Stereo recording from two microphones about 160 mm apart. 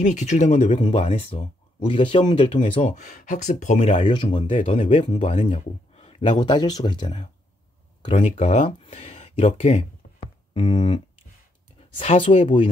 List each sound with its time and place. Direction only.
0.0 s speech: 50° left (ahead or behind)
0.8 s speech: 40° left (ahead or behind)
2.8 s speech: 50° left (ahead or behind)
4.0 s speech: 30° left (ahead or behind)
5.3 s speech: 50° left (ahead or behind)
6.3 s speech: 25° left (ahead or behind)
8.2 s speech: 45° left (ahead or behind)
8.9 s a sound: 45° left (ahead or behind)
12.0 s speech: 40° left (ahead or behind)